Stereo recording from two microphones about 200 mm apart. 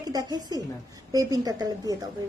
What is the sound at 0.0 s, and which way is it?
A woman's voice, 20° right (ahead or behind).